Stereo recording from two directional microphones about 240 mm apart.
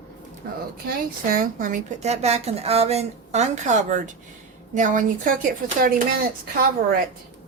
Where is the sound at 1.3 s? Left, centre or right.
Right.